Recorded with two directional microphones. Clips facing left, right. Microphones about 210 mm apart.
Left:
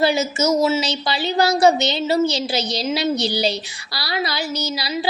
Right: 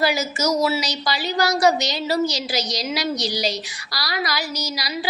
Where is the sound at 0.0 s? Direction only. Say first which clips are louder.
Left 3 dB; 25° left (ahead or behind).